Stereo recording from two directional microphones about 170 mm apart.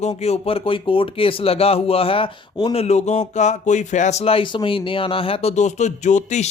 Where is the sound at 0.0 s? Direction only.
40° left (ahead or behind).